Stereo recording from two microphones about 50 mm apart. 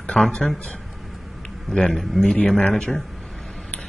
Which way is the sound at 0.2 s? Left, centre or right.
Centre.